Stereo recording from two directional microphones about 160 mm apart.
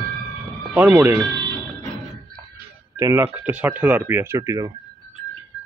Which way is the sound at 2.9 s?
15° right (ahead or behind).